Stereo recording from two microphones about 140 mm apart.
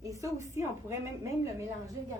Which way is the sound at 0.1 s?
25° right (ahead or behind).